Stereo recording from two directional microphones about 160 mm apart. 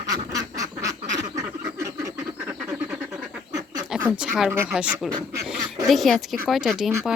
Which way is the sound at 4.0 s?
10° right (ahead or behind).